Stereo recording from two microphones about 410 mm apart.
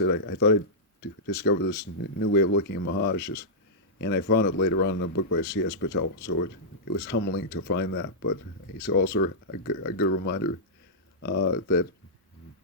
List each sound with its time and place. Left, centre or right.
0.0 s speech: left